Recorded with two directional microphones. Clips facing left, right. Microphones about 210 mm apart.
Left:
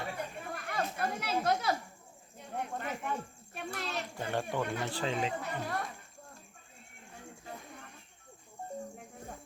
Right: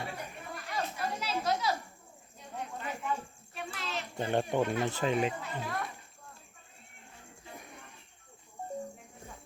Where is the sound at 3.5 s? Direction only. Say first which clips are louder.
Left 1 dB; 40° left (ahead or behind).